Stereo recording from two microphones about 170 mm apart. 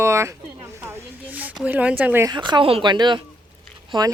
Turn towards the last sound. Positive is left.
turn(degrees=-25)  # may be behind; listen again after turning